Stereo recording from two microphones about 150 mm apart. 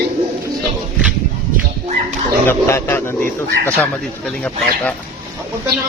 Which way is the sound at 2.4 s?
15° left (ahead or behind).